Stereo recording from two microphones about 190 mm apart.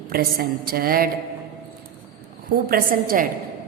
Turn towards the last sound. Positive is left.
turn(degrees=-45)  # may be behind; listen again after turning